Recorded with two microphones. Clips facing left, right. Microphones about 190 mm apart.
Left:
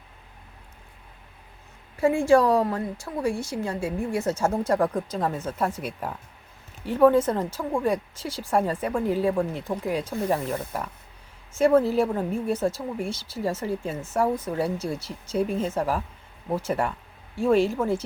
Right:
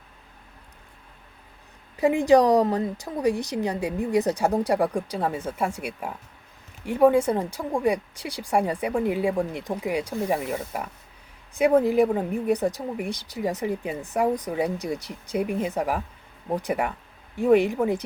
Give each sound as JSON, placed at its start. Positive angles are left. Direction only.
{"t": 2.0, "sound": "speech", "side_deg": -20}